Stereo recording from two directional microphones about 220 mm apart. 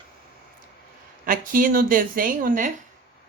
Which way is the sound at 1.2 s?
40° right (ahead or behind).